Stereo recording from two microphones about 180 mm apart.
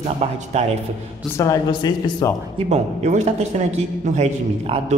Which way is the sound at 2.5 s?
35° right (ahead or behind).